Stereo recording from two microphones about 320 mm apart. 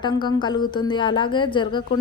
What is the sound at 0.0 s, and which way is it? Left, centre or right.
A woman's voice, centre.